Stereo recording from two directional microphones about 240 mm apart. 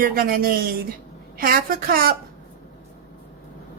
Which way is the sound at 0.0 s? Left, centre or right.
Right.